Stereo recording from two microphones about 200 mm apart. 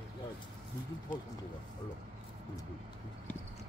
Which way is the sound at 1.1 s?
45° left (ahead or behind).